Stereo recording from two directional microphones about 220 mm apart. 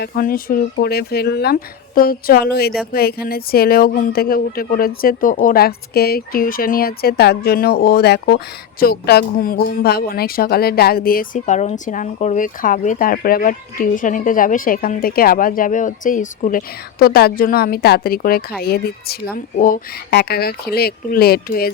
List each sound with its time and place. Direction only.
0.0 s speech: 45° left (ahead or behind)